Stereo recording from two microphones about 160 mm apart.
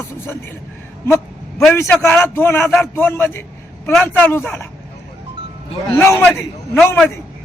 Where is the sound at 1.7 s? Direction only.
15° left (ahead or behind).